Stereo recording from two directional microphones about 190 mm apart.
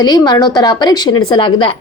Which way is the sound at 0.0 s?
20° left (ahead or behind).